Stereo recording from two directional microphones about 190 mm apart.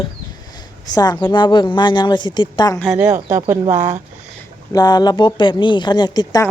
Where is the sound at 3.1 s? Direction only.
35° right (ahead or behind).